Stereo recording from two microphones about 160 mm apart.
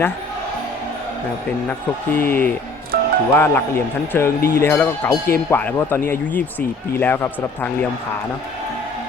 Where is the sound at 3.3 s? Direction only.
15° left (ahead or behind).